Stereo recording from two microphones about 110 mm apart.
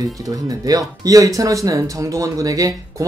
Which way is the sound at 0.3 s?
35° right (ahead or behind).